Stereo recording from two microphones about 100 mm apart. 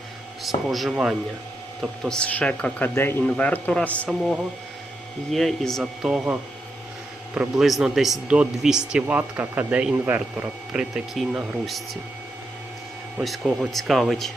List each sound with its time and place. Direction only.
0.4 s speech: centre (ahead or behind)
2.9 s a man's voice: 25° left (ahead or behind)
3.2 s speech: 10° left (ahead or behind)
5.3 s speech: 5° left (ahead or behind)
7.3 s speech: 5° right (ahead or behind); by 10.5 s 20° right (ahead or behind)
10.7 s speech: 5° right (ahead or behind)
13.2 s speech: centre (ahead or behind)